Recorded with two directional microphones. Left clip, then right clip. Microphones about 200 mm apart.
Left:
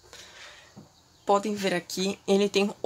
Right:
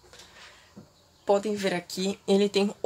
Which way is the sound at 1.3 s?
10° left (ahead or behind).